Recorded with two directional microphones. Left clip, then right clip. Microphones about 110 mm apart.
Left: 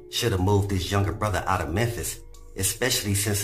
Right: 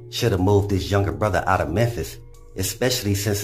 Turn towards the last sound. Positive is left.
turn(degrees=-30)  # may be behind; listen again after turning